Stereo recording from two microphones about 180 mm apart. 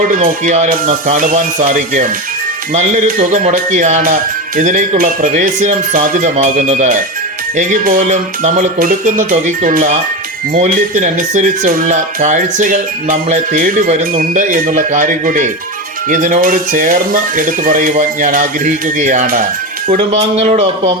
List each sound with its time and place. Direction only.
0.1 s a man's voice: 45° right (ahead or behind)